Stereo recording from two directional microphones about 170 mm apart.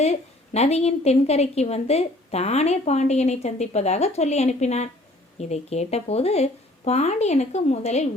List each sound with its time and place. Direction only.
0.0 s a woman's voice: 40° left (ahead or behind)